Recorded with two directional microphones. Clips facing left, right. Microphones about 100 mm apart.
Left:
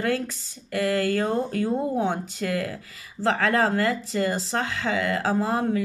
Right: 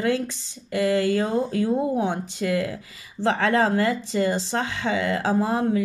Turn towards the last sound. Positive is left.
turn(degrees=-20)  # may be behind; listen again after turning